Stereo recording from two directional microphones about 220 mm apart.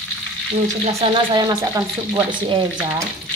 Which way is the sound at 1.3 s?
15° right (ahead or behind).